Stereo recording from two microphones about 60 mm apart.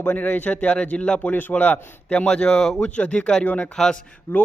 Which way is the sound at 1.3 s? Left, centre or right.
Left.